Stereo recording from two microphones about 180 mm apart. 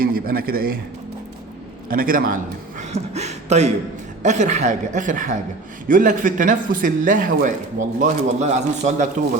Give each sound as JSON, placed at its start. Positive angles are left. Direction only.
{"t": 0.0, "sound": "a man's voice", "side_deg": -55}
{"t": 1.9, "sound": "a man's voice", "side_deg": -50}